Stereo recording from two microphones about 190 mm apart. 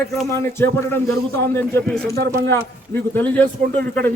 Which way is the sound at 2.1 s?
55° right (ahead or behind).